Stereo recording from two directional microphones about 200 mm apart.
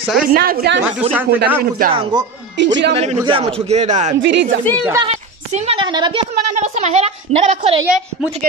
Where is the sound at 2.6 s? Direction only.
60° right (ahead or behind).